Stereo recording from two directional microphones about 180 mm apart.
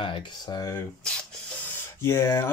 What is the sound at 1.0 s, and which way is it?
Spray, 10° left (ahead or behind).